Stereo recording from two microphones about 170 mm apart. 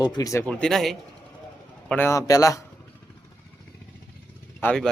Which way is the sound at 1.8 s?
10° left (ahead or behind).